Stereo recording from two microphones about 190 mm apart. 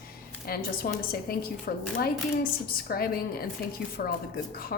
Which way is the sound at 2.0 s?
50° left (ahead or behind).